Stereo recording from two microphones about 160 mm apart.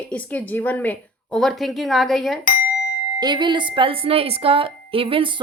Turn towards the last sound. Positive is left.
turn(degrees=-35)  # may be behind; listen again after turning